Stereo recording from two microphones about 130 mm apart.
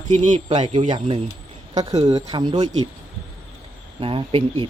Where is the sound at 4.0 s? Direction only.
45° right (ahead or behind).